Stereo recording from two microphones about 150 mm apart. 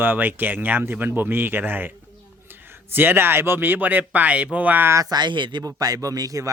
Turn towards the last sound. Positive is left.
turn(degrees=-20)  # may be behind; listen again after turning